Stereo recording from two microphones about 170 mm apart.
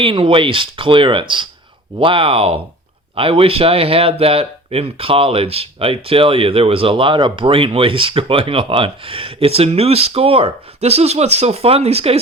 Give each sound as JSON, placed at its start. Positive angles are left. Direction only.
{"t": 0.0, "sound": "speech", "side_deg": -30}